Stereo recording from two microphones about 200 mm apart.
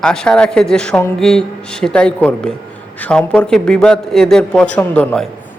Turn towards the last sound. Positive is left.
turn(degrees=5)  # may be behind; listen again after turning